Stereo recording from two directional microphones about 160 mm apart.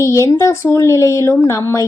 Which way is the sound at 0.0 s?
20° left (ahead or behind).